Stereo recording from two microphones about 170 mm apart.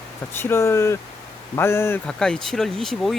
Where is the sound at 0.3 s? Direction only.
15° left (ahead or behind).